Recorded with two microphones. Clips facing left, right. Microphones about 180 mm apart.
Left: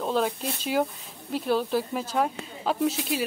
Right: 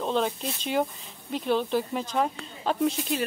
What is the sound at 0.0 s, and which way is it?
Speech, 5° left (ahead or behind).